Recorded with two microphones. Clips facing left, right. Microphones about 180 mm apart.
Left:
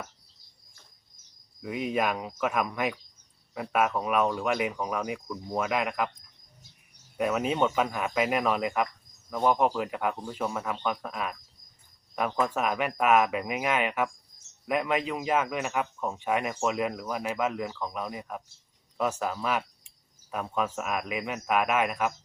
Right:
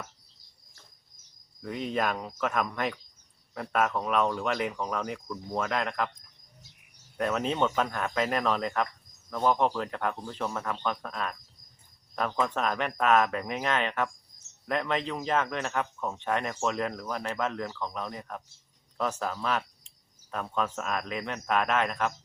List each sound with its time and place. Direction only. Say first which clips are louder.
1.6 s speech: left 2 dB; 10° left (ahead or behind)
7.2 s speech: left 2 dB; 5° left (ahead or behind)